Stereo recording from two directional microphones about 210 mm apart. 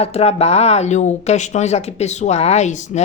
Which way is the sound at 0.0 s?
30° left (ahead or behind).